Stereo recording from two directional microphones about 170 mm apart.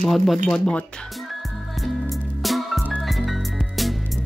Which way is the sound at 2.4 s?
Centre (ahead or behind).